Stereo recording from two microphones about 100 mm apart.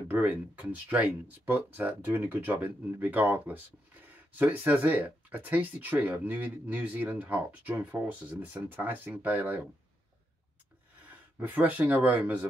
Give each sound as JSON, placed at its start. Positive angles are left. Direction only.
{"t": 0.1, "sound": "speech", "side_deg": -15}
{"t": 11.3, "sound": "speech", "side_deg": -20}